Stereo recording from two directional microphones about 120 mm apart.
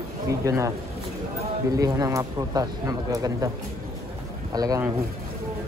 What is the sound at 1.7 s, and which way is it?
Speech, 30° right (ahead or behind).